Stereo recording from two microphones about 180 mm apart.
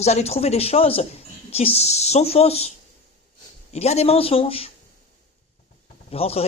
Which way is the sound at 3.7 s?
35° left (ahead or behind).